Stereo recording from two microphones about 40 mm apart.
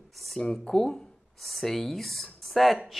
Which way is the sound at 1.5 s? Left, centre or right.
Centre.